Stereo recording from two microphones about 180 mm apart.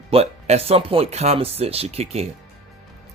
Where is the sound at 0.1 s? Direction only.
35° right (ahead or behind).